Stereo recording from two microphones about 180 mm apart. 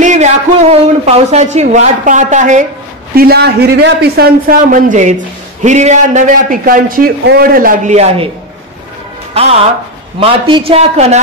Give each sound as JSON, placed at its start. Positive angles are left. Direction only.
{"t": 0.0, "sound": "a man's voice", "side_deg": -40}
{"t": 3.2, "sound": "a man's voice", "side_deg": -60}
{"t": 9.3, "sound": "a man's voice", "side_deg": -35}